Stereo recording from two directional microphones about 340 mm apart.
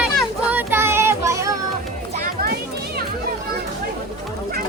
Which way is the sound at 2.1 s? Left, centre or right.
Right.